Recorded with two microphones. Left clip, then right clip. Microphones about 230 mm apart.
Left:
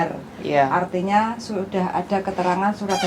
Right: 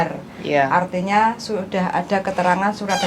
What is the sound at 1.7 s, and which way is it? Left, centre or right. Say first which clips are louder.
Speech: right 2 dB; right.